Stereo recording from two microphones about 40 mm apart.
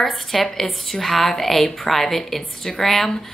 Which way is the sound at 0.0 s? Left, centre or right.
Centre.